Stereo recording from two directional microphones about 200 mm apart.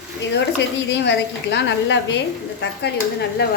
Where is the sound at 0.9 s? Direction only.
60° left (ahead or behind).